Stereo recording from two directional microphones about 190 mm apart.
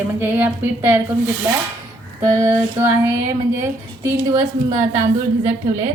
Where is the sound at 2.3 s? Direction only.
15° right (ahead or behind).